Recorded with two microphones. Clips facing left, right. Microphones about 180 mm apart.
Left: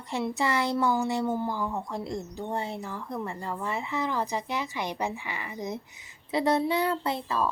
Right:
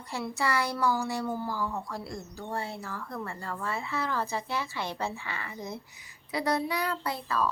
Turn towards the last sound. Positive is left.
turn(degrees=25)  # may be behind; listen again after turning